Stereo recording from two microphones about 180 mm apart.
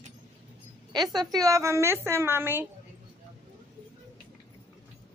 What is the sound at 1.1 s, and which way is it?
A woman's voice, 20° right (ahead or behind).